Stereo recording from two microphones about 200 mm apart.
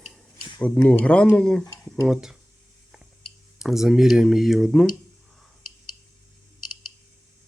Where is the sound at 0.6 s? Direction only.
5° left (ahead or behind).